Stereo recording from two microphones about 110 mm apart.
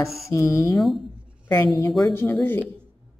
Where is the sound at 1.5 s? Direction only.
35° left (ahead or behind).